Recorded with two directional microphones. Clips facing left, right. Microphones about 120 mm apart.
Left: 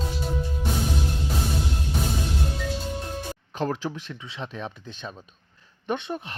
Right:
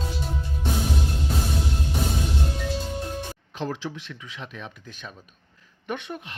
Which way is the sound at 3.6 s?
45° left (ahead or behind).